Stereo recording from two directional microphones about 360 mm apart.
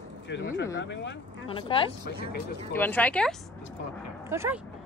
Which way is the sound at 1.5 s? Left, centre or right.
Centre.